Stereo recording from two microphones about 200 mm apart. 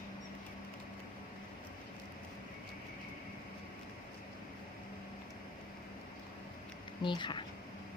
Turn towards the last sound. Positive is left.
turn(degrees=25)  # may be behind; listen again after turning